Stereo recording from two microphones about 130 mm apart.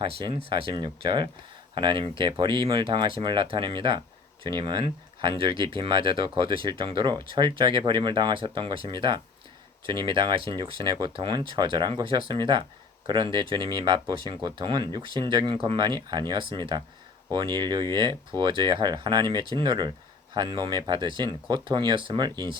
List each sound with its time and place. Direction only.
0.0 s speech: 40° right (ahead or behind)